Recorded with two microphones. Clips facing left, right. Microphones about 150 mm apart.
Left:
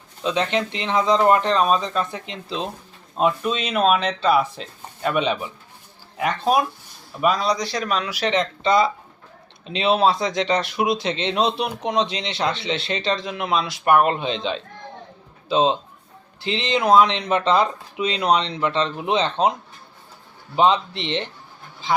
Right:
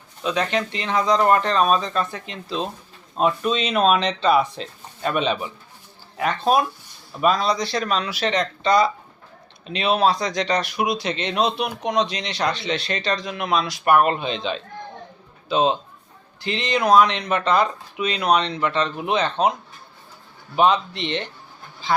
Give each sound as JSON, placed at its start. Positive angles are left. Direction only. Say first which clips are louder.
{"t": 0.2, "sound": "a man's voice", "louder": "left 1 dB", "side_deg": 20}
{"t": 20.6, "sound": "a man's voice", "louder": "even", "side_deg": 25}